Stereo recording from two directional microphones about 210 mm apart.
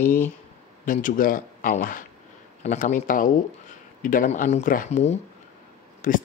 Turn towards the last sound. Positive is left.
turn(degrees=40)  # may be behind; listen again after turning